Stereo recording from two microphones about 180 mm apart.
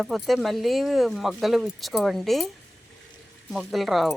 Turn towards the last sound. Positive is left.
turn(degrees=0)  # may be behind; listen again after turning